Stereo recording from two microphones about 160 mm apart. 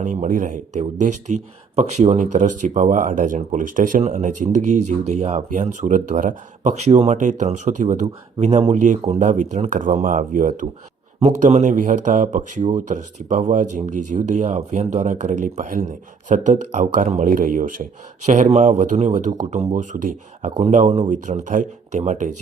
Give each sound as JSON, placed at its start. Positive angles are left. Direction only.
{"t": 0.0, "sound": "speech", "side_deg": -55}